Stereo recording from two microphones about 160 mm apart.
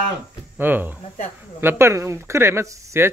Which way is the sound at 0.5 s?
10° right (ahead or behind).